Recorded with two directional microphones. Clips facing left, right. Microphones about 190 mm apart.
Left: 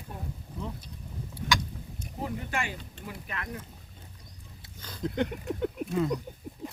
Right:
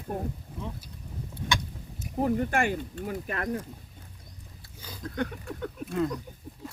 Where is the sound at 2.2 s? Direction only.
50° right (ahead or behind).